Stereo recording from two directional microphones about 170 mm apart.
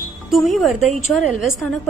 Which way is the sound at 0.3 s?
Centre (ahead or behind).